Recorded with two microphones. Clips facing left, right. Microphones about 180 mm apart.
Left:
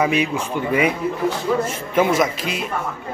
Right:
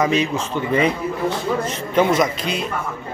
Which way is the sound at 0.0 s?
10° left (ahead or behind).